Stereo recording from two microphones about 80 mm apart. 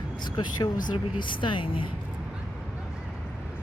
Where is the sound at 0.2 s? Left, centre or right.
Left.